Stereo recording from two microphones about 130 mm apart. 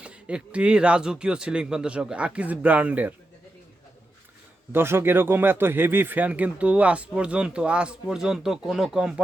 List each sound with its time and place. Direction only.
0.0 s speech: 10° right (ahead or behind)
4.7 s speech: 20° right (ahead or behind)